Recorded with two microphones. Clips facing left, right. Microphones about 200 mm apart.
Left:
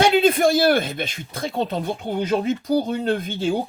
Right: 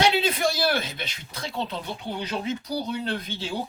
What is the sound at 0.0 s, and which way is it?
Speech, 50° left (ahead or behind).